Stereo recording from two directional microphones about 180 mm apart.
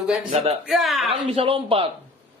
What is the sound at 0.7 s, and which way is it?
Speech, centre (ahead or behind).